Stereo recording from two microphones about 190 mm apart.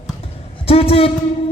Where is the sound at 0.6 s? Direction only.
30° left (ahead or behind).